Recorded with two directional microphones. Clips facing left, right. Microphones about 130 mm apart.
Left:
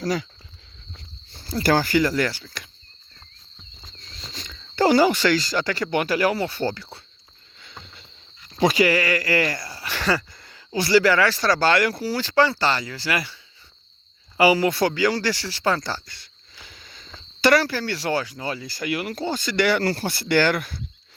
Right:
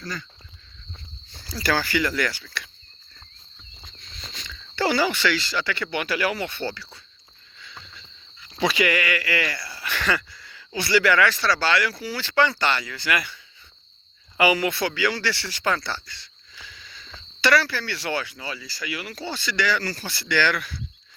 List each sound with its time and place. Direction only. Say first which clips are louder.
0.0 s speech: left 10 dB; 90° left
1.5 s speech: left 5 dB; 50° left (ahead or behind)
3.8 s walk: left 1 dB; 30° left (ahead or behind)
4.4 s speech: left 5 dB; 45° left (ahead or behind)
8.5 s speech: left 4 dB; 40° left (ahead or behind)